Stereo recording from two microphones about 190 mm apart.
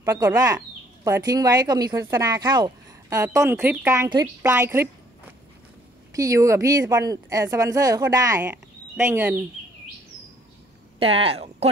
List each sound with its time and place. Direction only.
0.0 s speech: 15° right (ahead or behind)
6.1 s speech: 15° right (ahead or behind)
11.0 s speech: 30° right (ahead or behind)